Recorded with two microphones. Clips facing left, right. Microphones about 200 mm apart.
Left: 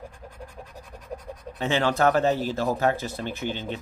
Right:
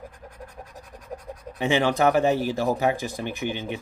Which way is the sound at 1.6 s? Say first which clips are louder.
Right 2 dB; 15° right (ahead or behind).